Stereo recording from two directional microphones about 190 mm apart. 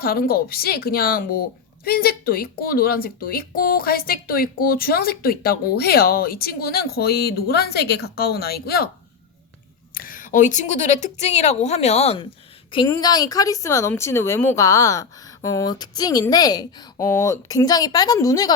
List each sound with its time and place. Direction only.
0.0 s a woman's voice: 50° left (ahead or behind)
9.9 s a woman's voice: 50° left (ahead or behind); by 18.5 s 20° left (ahead or behind)